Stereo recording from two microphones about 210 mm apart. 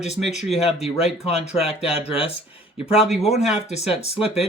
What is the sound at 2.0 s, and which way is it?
Speech, 25° left (ahead or behind).